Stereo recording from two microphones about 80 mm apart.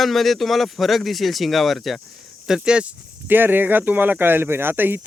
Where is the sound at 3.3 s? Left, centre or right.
Right.